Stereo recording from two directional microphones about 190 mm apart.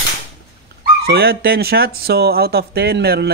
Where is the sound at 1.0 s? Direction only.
55° right (ahead or behind).